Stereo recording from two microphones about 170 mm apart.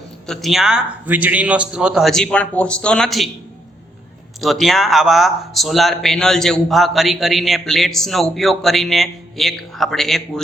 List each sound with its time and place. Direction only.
0.3 s a man's voice: centre (ahead or behind)
4.4 s a man's voice: centre (ahead or behind)